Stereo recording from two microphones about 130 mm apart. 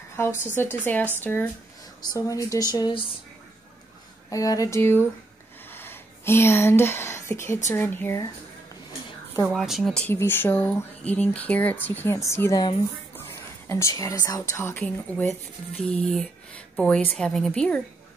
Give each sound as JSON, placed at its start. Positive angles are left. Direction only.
{"t": 0.6, "sound": "speech", "side_deg": 15}
{"t": 2.0, "sound": "speech", "side_deg": 25}
{"t": 4.3, "sound": "speech", "side_deg": 25}
{"t": 5.7, "sound": "a sound", "side_deg": 15}
{"t": 7.7, "sound": "speech", "side_deg": 15}
{"t": 9.5, "sound": "speech", "side_deg": 0}
{"t": 10.0, "sound": "speech", "side_deg": 15}
{"t": 13.1, "sound": "a sound", "side_deg": 20}
{"t": 14.5, "sound": "speech", "side_deg": 20}